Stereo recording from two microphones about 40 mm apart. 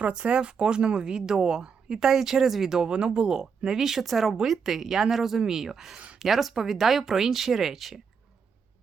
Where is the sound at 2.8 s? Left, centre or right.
Right; by 8.0 s centre.